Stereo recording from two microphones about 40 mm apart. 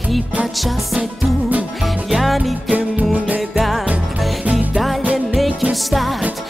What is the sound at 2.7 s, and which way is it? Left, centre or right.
Music, right.